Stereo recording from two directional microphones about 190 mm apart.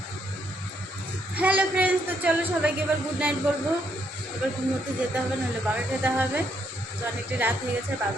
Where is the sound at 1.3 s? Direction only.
10° right (ahead or behind).